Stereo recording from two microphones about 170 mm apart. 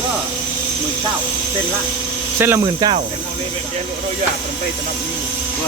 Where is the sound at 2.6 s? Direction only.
25° right (ahead or behind).